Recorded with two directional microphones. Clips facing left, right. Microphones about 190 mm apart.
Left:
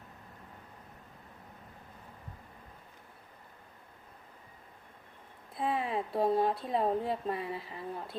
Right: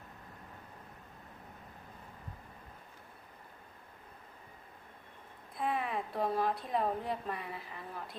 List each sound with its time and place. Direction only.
5.5 s speech: 30° left (ahead or behind)